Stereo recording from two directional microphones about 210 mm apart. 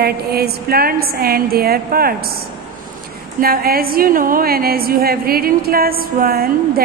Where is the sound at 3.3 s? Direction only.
45° right (ahead or behind).